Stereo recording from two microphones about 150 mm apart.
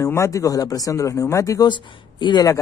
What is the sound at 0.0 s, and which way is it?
Speech, 20° left (ahead or behind).